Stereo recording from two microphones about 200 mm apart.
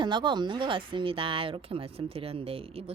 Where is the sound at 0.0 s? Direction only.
25° right (ahead or behind).